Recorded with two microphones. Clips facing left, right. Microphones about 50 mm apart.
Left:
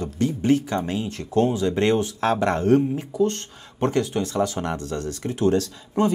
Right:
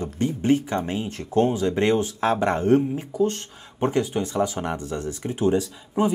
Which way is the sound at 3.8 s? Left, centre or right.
Centre.